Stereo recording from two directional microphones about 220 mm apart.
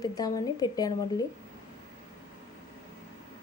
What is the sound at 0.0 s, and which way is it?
Speech, 15° left (ahead or behind).